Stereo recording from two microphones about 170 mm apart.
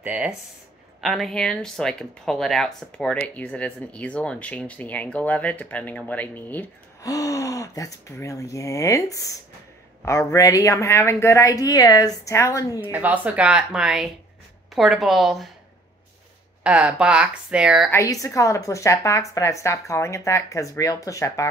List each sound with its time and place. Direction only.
0.0 s speech: 5° right (ahead or behind); by 12.9 s 20° left (ahead or behind)
12.9 s speech: 10° right (ahead or behind)
16.6 s speech: 5° right (ahead or behind)
17.9 s speech: 20° left (ahead or behind)